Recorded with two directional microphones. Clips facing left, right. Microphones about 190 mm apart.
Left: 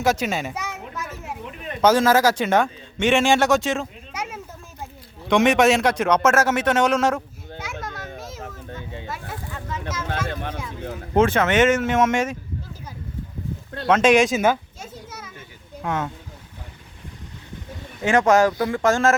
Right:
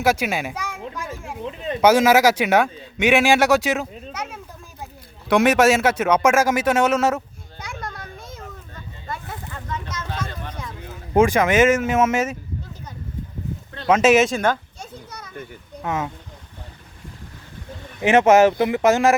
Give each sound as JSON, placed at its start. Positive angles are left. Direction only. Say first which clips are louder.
{"t": 0.0, "sound": "speech", "louder": "right 1 dB", "side_deg": -5}
{"t": 1.8, "sound": "speech", "louder": "right 2 dB", "side_deg": -10}
{"t": 4.1, "sound": "a sound", "louder": "even", "side_deg": 10}
{"t": 5.3, "sound": "speech", "louder": "right 1 dB", "side_deg": -5}
{"t": 7.6, "sound": "children playing", "louder": "even", "side_deg": 0}
{"t": 9.0, "sound": "a sound", "louder": "even", "side_deg": 5}
{"t": 10.2, "sound": "a sound", "louder": "left 5 dB", "side_deg": 60}
{"t": 11.1, "sound": "speech", "louder": "right 2 dB", "side_deg": -10}
{"t": 13.8, "sound": "children playing", "louder": "right 1 dB", "side_deg": -5}
{"t": 15.8, "sound": "speech", "louder": "even", "side_deg": -5}
{"t": 18.0, "sound": "speech", "louder": "right 3 dB", "side_deg": -20}